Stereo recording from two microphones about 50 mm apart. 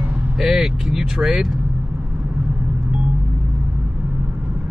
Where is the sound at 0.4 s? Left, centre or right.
Centre.